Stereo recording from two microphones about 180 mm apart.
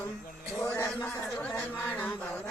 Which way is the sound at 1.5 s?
10° left (ahead or behind).